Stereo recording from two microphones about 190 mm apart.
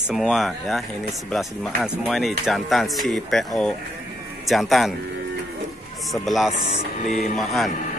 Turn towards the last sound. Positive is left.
turn(degrees=0)  # may be behind; listen again after turning